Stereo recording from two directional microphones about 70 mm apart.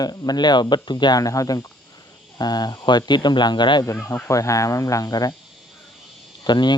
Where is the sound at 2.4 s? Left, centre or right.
Left.